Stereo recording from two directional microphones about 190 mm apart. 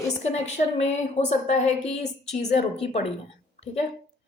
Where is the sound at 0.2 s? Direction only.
35° left (ahead or behind).